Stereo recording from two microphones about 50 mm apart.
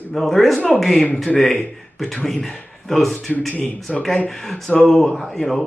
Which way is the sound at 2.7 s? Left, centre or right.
Centre.